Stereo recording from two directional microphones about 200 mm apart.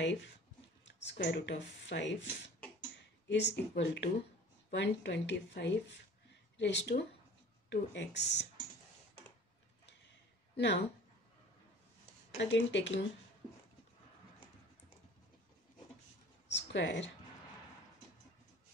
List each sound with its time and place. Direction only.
0.0 s speech: 65° left (ahead or behind)
3.3 s speech: 60° left (ahead or behind)
10.5 s a sound: 60° left (ahead or behind)
12.4 s speech: 65° left (ahead or behind)
16.4 s speech: 65° left (ahead or behind)